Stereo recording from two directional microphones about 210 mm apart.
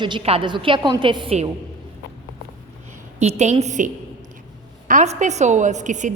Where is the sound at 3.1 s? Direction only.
30° right (ahead or behind).